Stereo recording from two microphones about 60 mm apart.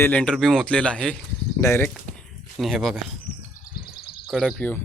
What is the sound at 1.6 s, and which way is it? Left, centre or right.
Speech, left.